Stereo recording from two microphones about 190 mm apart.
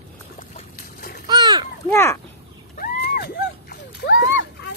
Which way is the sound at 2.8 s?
55° left (ahead or behind).